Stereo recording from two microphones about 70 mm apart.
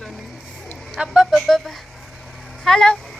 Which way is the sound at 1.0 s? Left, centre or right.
Centre.